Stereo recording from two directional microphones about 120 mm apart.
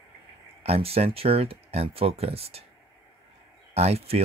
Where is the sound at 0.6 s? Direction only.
55° right (ahead or behind).